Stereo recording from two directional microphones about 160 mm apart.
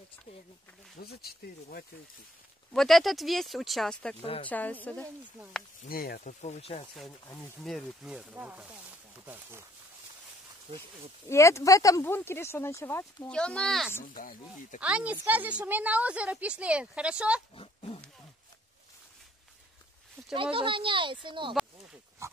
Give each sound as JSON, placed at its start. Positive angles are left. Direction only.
{"t": 1.1, "sound": "speech", "side_deg": 75}
{"t": 2.7, "sound": "speech", "side_deg": 0}
{"t": 4.2, "sound": "speech", "side_deg": 35}
{"t": 4.5, "sound": "speech", "side_deg": 10}
{"t": 5.8, "sound": "speech", "side_deg": 65}
{"t": 6.4, "sound": "speech", "side_deg": 40}
{"t": 7.6, "sound": "speech", "side_deg": 0}
{"t": 11.2, "sound": "speech", "side_deg": 15}
{"t": 14.1, "sound": "speech", "side_deg": 55}
{"t": 14.8, "sound": "a woman's voice", "side_deg": -5}
{"t": 17.6, "sound": "speech", "side_deg": 35}
{"t": 20.2, "sound": "a sound", "side_deg": 5}
{"t": 20.5, "sound": "speech", "side_deg": -30}
{"t": 22.2, "sound": "pig", "side_deg": -15}